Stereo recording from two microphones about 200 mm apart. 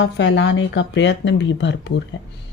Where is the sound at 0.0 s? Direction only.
65° left (ahead or behind).